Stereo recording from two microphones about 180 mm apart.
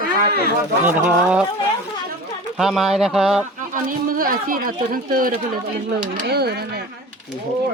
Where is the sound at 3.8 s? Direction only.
50° right (ahead or behind).